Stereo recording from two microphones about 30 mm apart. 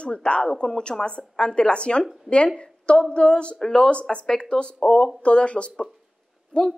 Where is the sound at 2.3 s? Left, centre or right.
Right.